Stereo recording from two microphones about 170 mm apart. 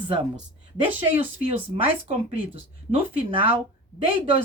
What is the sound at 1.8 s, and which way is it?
Speech, 35° right (ahead or behind).